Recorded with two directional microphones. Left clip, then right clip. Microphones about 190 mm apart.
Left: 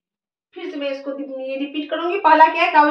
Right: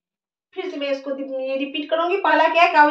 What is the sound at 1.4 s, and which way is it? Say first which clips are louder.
Speech: even; 35° right (ahead or behind).